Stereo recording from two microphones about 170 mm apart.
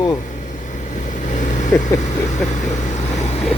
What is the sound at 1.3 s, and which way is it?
Vehicle, 45° left (ahead or behind).